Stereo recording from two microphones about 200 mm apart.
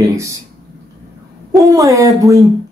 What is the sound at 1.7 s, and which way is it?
Speech, 15° right (ahead or behind).